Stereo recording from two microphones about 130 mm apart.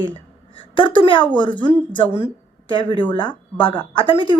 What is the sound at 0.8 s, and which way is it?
Speech, 40° left (ahead or behind).